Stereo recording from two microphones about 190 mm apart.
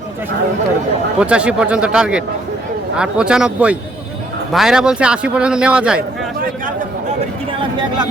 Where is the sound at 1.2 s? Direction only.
5° right (ahead or behind).